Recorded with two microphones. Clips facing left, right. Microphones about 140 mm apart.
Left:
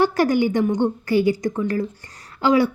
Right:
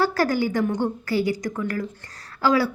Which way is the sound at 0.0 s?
20° left (ahead or behind).